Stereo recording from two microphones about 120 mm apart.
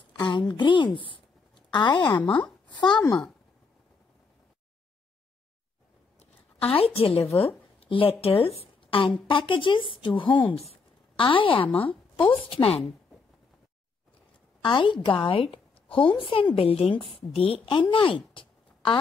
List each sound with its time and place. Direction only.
0.2 s a woman's voice: 40° left (ahead or behind)
6.7 s a woman's voice: 55° left (ahead or behind)
10.7 s a sound: 45° left (ahead or behind)
11.7 s a woman's voice: 50° left (ahead or behind)
14.6 s a woman's voice: 40° left (ahead or behind)